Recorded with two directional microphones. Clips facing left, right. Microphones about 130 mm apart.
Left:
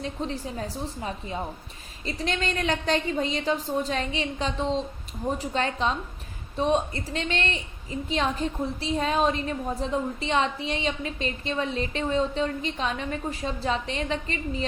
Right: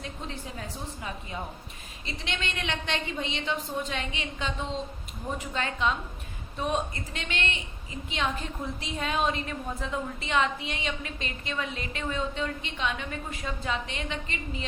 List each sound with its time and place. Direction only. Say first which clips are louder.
0.0 s a woman's voice: left 7 dB; 35° left (ahead or behind)